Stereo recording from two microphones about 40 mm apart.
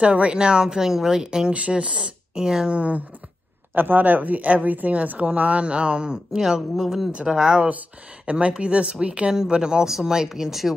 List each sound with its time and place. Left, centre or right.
0.0 s speech: right
1.5 s speech: right
2.7 s speech: right
3.7 s speech: right
6.4 s speech: centre
7.1 s speech: right
7.3 s speech: centre
8.3 s speech: right
9.3 s speech: centre